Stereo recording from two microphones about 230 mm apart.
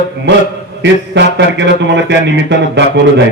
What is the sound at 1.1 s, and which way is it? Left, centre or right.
Speech, right.